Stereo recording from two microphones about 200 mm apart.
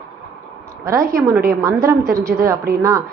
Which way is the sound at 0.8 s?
15° right (ahead or behind).